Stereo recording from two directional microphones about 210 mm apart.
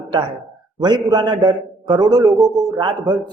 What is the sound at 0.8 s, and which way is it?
A man's voice, 20° right (ahead or behind).